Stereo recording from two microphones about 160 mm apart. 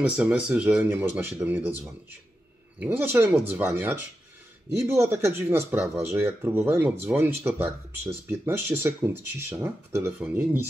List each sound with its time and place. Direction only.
0.0 s speech: 10° right (ahead or behind)
2.8 s speech: 10° right (ahead or behind)